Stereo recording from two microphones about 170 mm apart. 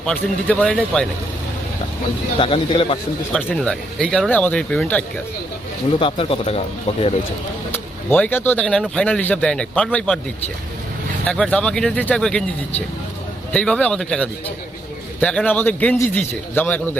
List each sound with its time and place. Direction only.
0.0 s speech: 5° left (ahead or behind)
2.4 s speech: 30° left (ahead or behind)
3.3 s speech: 5° left (ahead or behind)
6.0 s speech: 30° left (ahead or behind)
8.1 s speech: 10° left (ahead or behind)
11.3 s speech: 5° left (ahead or behind)
13.5 s speech: 5° left (ahead or behind)